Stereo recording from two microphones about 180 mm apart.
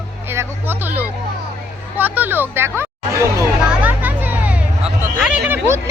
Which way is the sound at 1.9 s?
10° right (ahead or behind).